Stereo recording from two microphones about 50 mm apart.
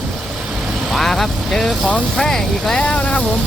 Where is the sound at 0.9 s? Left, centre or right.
Centre.